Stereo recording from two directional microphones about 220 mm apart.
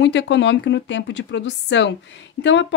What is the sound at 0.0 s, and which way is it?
A woman's voice, 55° left (ahead or behind).